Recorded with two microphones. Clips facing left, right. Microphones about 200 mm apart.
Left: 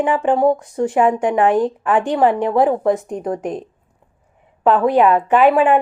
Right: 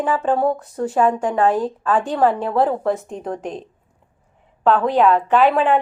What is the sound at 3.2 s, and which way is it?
Speech, centre (ahead or behind).